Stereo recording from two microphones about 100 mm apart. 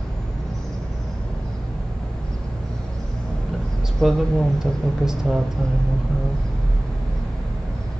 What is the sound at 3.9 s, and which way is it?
Speech, centre (ahead or behind).